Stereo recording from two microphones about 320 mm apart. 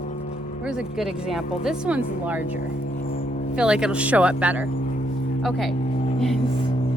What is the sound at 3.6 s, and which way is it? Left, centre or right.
Speech, centre.